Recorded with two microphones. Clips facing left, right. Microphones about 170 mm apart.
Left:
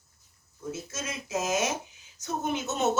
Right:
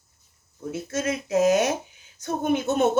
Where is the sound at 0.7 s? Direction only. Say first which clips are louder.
Right 10 dB; 60° right (ahead or behind).